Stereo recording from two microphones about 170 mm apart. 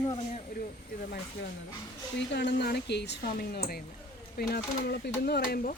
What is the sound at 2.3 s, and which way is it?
Speech, 90° left.